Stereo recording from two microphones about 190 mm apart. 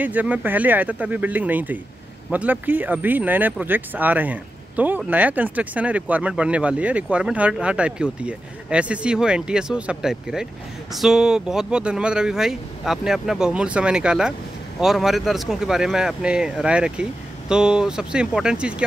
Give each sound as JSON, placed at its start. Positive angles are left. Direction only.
{"t": 0.0, "sound": "speech", "side_deg": -10}